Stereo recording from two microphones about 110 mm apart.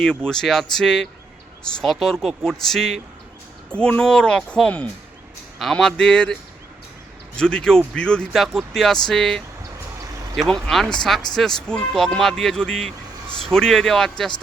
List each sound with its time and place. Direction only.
0.0 s speech: 5° left (ahead or behind)
7.3 s speech: 5° left (ahead or behind)